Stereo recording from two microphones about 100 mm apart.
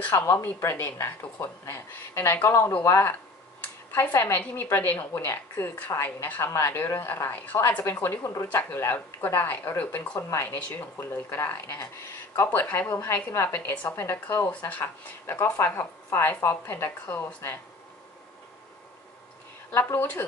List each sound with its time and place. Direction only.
0.0 s a woman's voice: 20° left (ahead or behind)
3.6 s a sound: 15° left (ahead or behind)
4.1 s a woman's voice: 20° left (ahead or behind)
17.0 s speech: 15° left (ahead or behind)
19.7 s a woman's voice: 20° left (ahead or behind)